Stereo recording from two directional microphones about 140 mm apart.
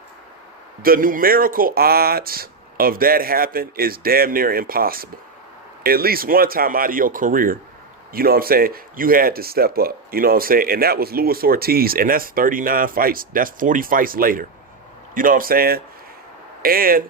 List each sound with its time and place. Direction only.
0.8 s speech: 85° right
15.1 s speech: 80° right